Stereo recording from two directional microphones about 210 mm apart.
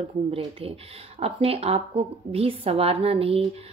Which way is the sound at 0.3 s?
25° right (ahead or behind).